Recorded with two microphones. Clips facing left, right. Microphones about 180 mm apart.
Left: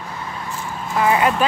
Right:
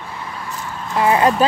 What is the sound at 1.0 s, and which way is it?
Speech, 30° right (ahead or behind).